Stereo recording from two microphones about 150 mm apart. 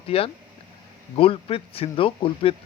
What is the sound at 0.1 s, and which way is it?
Speech, 40° left (ahead or behind).